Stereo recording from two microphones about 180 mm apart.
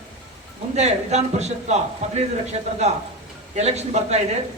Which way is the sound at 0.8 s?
40° right (ahead or behind).